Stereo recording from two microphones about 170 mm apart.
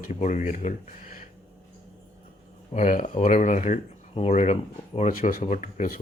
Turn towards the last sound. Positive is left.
turn(degrees=55)  # may be behind; listen again after turning